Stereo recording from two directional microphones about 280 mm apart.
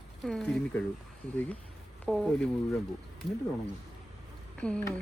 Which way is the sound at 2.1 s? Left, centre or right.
Centre.